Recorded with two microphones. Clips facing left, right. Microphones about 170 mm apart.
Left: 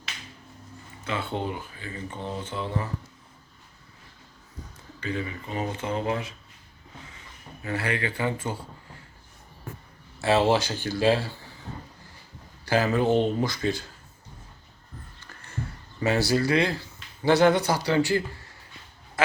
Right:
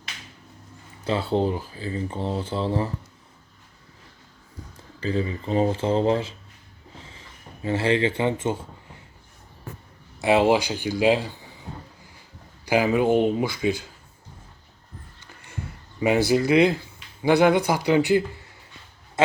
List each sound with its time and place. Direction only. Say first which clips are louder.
1.0 s speech: right 7 dB; 35° right (ahead or behind)
4.9 s speech: right 6 dB; 30° right (ahead or behind)
10.2 s speech: right 3 dB; 15° right (ahead or behind)
12.6 s speech: right 3 dB; 15° right (ahead or behind)
15.3 s a sound: right 2 dB; 15° right (ahead or behind)
16.0 s speech: right 4 dB; 15° right (ahead or behind)